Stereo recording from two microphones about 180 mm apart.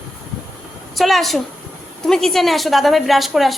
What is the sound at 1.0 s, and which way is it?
Speech, centre (ahead or behind).